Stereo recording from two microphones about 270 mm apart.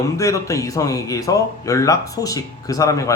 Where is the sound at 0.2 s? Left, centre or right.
Centre.